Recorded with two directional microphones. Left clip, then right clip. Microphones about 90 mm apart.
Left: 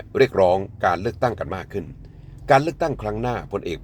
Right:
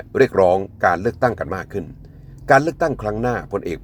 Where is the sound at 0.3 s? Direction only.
25° right (ahead or behind).